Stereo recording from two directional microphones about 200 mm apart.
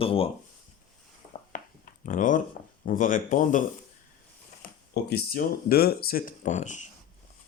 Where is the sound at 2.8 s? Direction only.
40° left (ahead or behind).